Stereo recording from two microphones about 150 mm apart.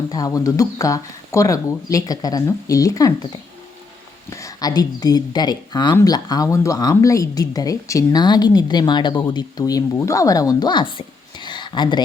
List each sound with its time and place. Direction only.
0.1 s a woman's voice: 25° left (ahead or behind)
4.3 s a woman's voice: 20° left (ahead or behind)